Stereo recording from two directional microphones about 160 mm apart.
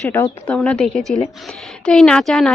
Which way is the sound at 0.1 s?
10° left (ahead or behind).